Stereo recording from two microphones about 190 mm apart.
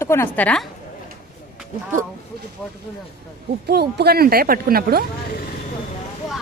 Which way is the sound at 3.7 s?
55° right (ahead or behind).